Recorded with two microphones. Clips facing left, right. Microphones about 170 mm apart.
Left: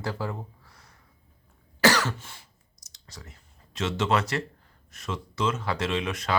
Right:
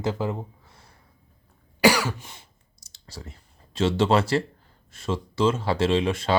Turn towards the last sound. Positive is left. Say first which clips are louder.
# right 6 dB
turn(degrees=-30)  # may be behind; listen again after turning